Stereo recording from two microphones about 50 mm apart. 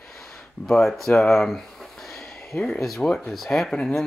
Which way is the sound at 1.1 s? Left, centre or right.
Centre.